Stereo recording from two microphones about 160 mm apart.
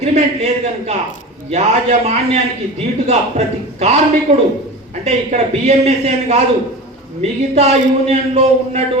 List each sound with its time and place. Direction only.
0.0 s a man's voice: 45° right (ahead or behind)